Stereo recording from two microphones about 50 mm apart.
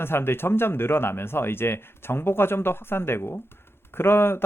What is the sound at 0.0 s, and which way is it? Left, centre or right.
Speech, left.